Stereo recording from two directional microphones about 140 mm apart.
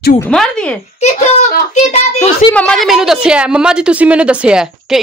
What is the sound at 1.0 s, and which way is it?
Speech, 50° left (ahead or behind).